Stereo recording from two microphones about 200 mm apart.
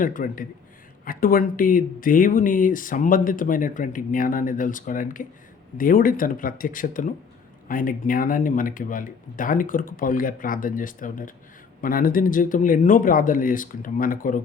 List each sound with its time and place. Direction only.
0.0 s speech: 45° left (ahead or behind)